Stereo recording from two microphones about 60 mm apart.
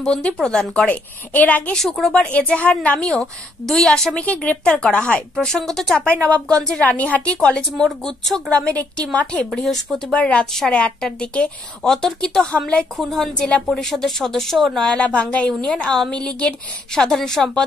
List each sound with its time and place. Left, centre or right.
0.0 s a woman's voice: centre
0.8 s a woman's voice: left
1.8 s a woman's voice: centre
2.1 s a woman's voice: left
4.1 s a woman's voice: left
5.3 s speech: centre
5.9 s a woman's voice: left
7.3 s a woman's voice: centre
12.9 s speech: centre
14.9 s a woman's voice: left